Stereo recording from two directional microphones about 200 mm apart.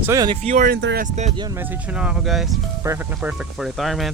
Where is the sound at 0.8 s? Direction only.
55° right (ahead or behind).